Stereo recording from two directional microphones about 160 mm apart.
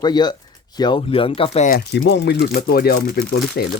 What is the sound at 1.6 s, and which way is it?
Speech, 75° left (ahead or behind).